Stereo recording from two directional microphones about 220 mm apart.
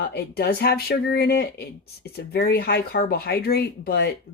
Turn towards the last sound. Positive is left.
turn(degrees=45)  # may be behind; listen again after turning